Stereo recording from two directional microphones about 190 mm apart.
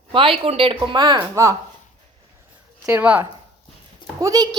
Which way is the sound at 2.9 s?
10° right (ahead or behind).